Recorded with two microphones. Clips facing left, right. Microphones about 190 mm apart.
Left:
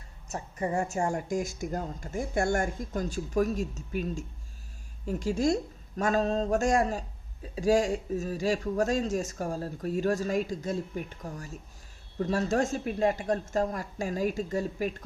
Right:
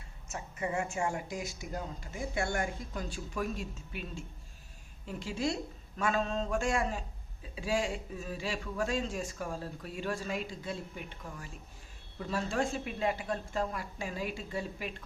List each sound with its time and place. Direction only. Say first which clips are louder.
0.3 s a man's voice: left 5 dB; 40° left (ahead or behind)
6.0 s a sound: left 5 dB; 40° left (ahead or behind)
7.5 s a man's voice: left 8 dB; 40° left (ahead or behind)